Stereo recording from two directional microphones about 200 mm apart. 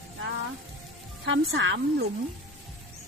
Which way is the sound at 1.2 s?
65° right (ahead or behind).